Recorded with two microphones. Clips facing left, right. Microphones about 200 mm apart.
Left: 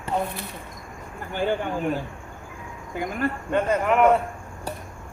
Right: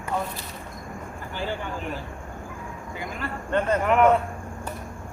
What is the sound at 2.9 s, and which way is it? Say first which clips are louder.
Speech: left 8 dB; 50° left (ahead or behind).